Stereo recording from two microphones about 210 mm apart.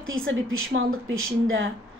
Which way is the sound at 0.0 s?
70° right (ahead or behind).